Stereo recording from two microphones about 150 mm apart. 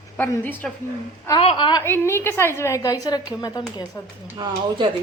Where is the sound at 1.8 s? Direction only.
15° left (ahead or behind).